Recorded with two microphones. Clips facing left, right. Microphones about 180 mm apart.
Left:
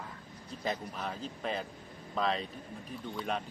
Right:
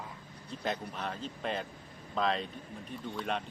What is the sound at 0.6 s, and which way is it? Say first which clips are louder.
Speech: even; centre (ahead or behind).